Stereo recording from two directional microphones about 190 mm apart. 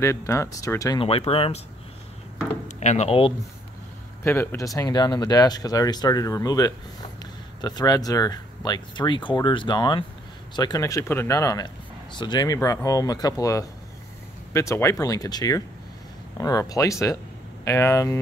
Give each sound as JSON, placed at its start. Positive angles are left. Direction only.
{"t": 0.0, "sound": "speech", "side_deg": 15}
{"t": 1.0, "sound": "speech", "side_deg": 30}
{"t": 2.8, "sound": "speech", "side_deg": 35}
{"t": 4.2, "sound": "speech", "side_deg": 10}